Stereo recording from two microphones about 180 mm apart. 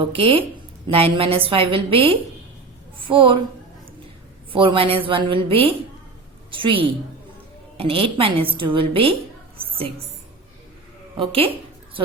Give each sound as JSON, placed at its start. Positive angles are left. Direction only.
{"t": 0.0, "sound": "a woman's voice", "side_deg": -30}
{"t": 4.5, "sound": "a woman's voice", "side_deg": -30}
{"t": 11.2, "sound": "a woman's voice", "side_deg": -30}